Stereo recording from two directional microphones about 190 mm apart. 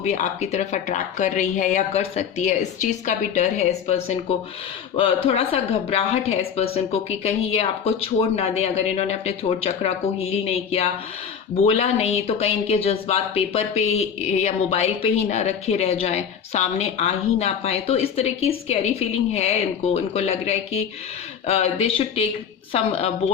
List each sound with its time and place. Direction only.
0.0 s speech: 35° left (ahead or behind)